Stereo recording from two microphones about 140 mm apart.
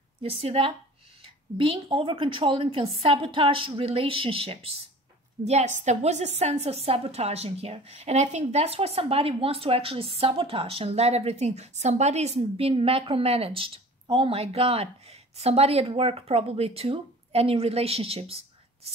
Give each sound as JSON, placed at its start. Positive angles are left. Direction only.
{"t": 0.2, "sound": "a woman's voice", "side_deg": -45}
{"t": 5.4, "sound": "a woman's voice", "side_deg": -55}